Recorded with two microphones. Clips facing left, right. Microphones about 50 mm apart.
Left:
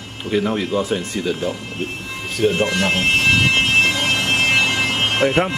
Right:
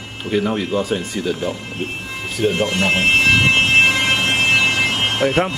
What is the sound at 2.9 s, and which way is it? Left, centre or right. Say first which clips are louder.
Fire alarm: right 3 dB; centre.